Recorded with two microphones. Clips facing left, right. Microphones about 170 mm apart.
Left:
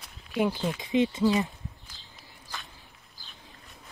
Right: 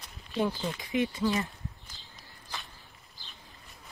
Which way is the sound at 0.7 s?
20° left (ahead or behind).